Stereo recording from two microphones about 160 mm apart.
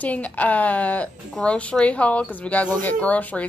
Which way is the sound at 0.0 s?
10° left (ahead or behind).